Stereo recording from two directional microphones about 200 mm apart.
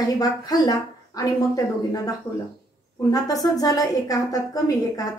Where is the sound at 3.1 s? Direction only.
20° left (ahead or behind).